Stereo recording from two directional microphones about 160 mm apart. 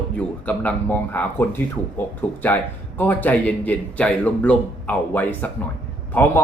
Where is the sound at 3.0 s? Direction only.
10° left (ahead or behind).